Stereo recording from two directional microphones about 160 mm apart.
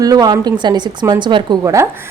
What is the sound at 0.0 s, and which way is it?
A woman's voice, 25° right (ahead or behind).